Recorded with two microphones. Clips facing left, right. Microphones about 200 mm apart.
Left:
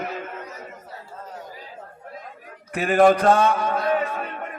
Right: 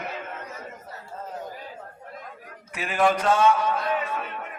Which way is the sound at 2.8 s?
50° left (ahead or behind).